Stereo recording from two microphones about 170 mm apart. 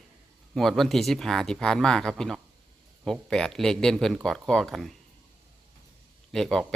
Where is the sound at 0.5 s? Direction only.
Centre (ahead or behind).